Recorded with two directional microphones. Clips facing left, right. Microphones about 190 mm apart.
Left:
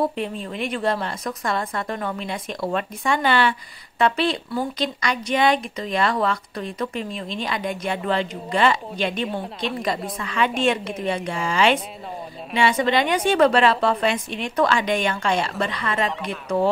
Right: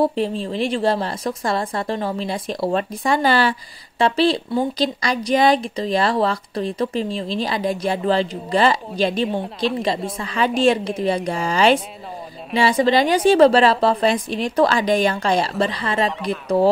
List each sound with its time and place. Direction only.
0.0 s speech: 30° right (ahead or behind)